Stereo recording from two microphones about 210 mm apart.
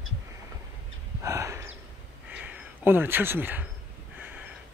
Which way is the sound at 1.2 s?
15° right (ahead or behind).